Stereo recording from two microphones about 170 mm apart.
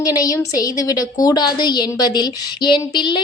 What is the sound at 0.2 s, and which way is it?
A woman's voice, 20° left (ahead or behind).